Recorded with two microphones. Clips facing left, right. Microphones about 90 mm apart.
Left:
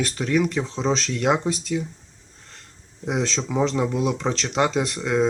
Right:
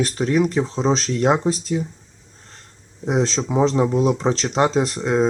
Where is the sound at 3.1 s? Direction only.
35° right (ahead or behind).